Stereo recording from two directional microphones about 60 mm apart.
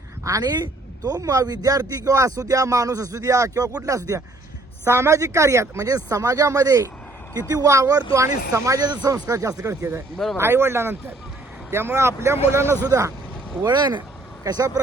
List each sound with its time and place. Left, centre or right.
0.3 s speech: right
3.8 s speech: right
4.9 s speech: right
9.0 s speech: right
12.8 s speech: right
14.4 s speech: right